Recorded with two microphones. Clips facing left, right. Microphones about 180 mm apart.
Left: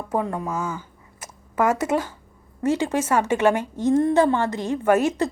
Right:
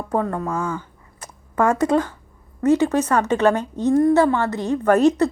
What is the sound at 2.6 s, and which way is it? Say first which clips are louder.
A woman's voice: right 4 dB; 15° left (ahead or behind).